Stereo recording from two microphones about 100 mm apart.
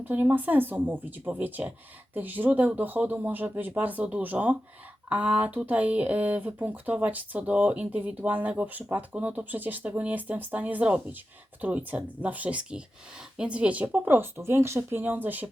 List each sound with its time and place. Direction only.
0.0 s speech: 20° right (ahead or behind)